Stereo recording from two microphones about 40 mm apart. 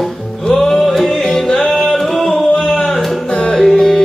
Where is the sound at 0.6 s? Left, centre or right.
Centre.